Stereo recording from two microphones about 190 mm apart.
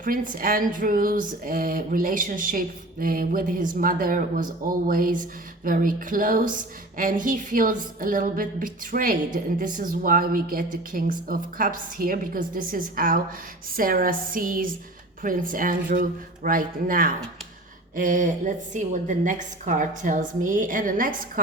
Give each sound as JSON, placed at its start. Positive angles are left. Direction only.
{"t": 0.0, "sound": "a woman's voice", "side_deg": -45}